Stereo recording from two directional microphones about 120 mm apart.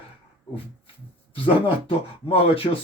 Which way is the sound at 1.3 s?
50° left (ahead or behind).